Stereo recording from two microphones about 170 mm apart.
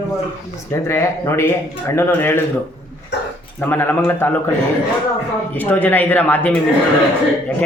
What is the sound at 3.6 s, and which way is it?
Speech, 10° left (ahead or behind).